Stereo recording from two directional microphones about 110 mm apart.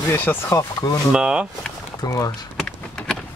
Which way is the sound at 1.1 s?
10° right (ahead or behind).